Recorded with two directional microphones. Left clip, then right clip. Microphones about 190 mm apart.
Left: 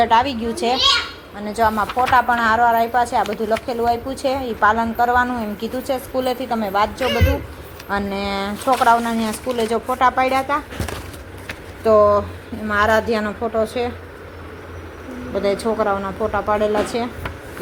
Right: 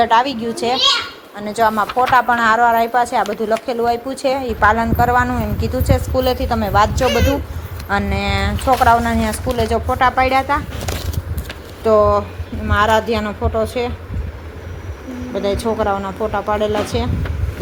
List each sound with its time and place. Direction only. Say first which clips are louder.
0.0 s a woman's voice: right 2 dB; 10° right (ahead or behind)
7.0 s a man's voice: right 4 dB; 30° right (ahead or behind)
7.9 s speech: right 3 dB; 5° right (ahead or behind)
11.9 s speech: even; 5° right (ahead or behind)
15.4 s speech: right 1 dB; centre (ahead or behind)